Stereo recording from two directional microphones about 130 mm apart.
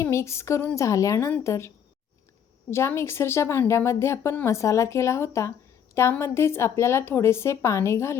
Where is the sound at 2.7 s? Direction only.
20° left (ahead or behind).